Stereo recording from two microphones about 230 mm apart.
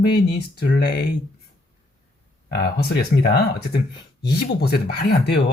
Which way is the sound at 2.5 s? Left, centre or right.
Left.